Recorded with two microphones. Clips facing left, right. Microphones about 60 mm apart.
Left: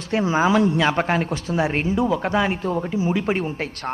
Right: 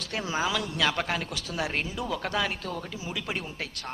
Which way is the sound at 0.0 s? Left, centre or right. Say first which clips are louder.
Left 10 dB; left.